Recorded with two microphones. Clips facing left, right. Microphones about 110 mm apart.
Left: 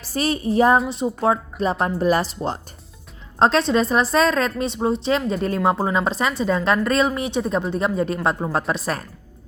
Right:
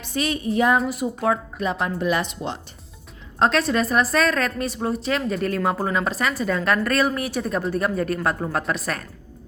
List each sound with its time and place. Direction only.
0.0 s a woman's voice: 35° left (ahead or behind)